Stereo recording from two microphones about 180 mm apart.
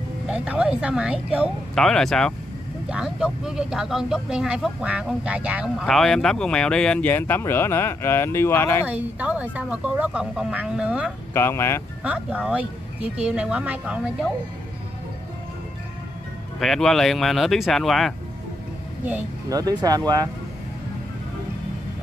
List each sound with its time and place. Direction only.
0.3 s speech: 5° right (ahead or behind); by 8.8 s 15° left (ahead or behind)
8.8 s speech: 10° right (ahead or behind)
11.3 s speech: 15° left (ahead or behind)
12.0 s speech: 5° right (ahead or behind)
16.5 s speech: centre (ahead or behind)
19.5 s speech: 20° right (ahead or behind)